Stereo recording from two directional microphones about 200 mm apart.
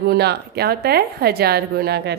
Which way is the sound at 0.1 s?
55° right (ahead or behind).